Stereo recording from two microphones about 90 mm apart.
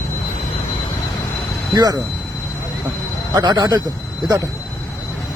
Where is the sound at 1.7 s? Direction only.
45° right (ahead or behind).